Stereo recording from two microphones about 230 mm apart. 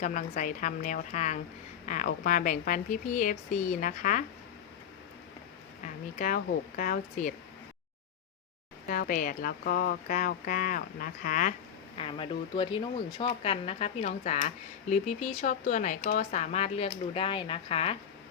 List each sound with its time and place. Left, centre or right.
0.0 s speech: left
6.1 s speech: left
8.9 s speech: left
11.9 s speech: left